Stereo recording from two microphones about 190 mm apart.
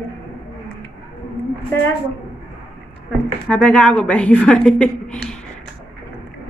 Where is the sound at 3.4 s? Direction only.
5° left (ahead or behind).